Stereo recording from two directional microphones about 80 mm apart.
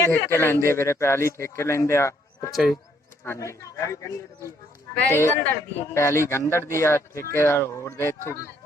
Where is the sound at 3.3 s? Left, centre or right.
Left.